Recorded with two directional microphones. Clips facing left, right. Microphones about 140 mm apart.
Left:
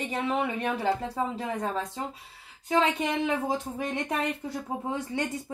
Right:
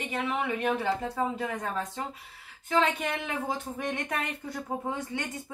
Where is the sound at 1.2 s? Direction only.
20° left (ahead or behind).